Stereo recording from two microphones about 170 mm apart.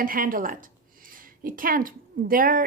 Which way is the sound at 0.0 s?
55° right (ahead or behind).